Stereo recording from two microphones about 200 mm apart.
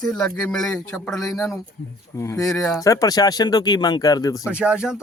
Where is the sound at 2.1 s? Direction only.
15° left (ahead or behind).